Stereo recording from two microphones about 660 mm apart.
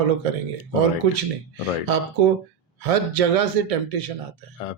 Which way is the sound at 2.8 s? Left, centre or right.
Right.